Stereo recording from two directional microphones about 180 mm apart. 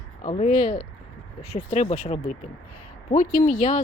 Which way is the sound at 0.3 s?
35° left (ahead or behind).